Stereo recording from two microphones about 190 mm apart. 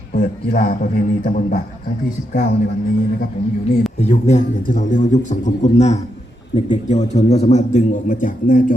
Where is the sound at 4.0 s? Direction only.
35° left (ahead or behind).